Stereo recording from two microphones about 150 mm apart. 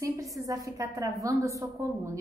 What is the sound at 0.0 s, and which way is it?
A woman's voice, 20° right (ahead or behind).